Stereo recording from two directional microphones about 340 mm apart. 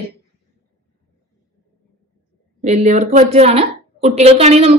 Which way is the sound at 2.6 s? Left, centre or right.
Centre.